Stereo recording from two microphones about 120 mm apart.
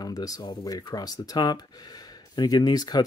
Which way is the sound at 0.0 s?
30° left (ahead or behind).